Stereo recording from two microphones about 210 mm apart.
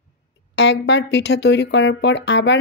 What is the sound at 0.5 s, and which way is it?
A woman's voice, 55° left (ahead or behind).